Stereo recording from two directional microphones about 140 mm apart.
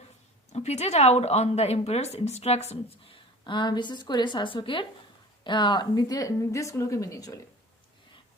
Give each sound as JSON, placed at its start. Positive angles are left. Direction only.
{"t": 0.5, "sound": "a woman's voice", "side_deg": 50}